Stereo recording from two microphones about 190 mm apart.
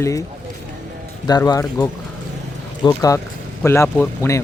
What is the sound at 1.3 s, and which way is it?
Speech, 20° left (ahead or behind).